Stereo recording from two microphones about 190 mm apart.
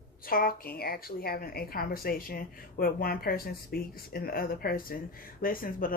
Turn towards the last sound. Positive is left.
turn(degrees=50)  # may be behind; listen again after turning